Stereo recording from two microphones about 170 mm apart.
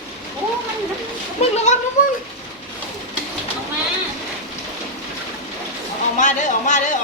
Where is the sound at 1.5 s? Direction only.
45° left (ahead or behind).